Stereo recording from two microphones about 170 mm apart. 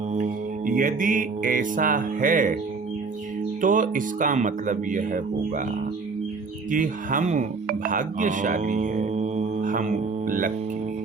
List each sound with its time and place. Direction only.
0.1 s music: 50° right (ahead or behind)
3.6 s speech: 50° right (ahead or behind)
6.7 s speech: 50° right (ahead or behind)